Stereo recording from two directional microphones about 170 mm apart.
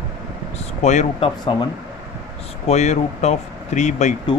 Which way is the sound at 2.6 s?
40° left (ahead or behind).